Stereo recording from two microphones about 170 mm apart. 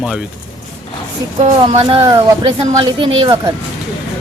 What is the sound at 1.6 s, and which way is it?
Speech, 35° right (ahead or behind).